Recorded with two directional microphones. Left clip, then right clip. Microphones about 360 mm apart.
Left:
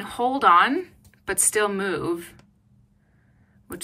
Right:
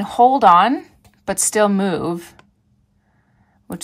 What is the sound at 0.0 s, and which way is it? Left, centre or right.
A woman's voice, centre.